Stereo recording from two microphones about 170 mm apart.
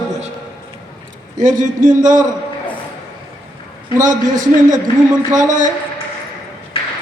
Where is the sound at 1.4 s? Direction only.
50° right (ahead or behind).